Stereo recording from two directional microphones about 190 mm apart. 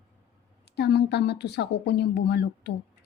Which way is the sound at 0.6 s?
60° left (ahead or behind).